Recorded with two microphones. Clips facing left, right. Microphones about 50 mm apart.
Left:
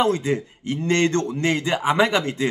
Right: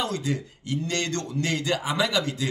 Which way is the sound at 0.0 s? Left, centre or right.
Left.